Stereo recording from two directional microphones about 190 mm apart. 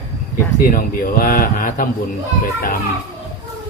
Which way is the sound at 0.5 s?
50° left (ahead or behind).